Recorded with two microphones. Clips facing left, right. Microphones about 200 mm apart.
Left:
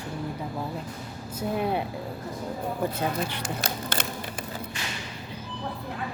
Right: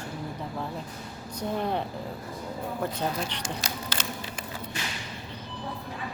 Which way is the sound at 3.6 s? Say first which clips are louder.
Left 3 dB; 55° left (ahead or behind).